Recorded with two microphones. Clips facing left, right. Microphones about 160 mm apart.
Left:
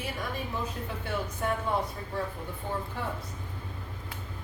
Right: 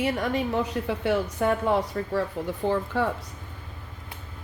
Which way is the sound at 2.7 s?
85° right.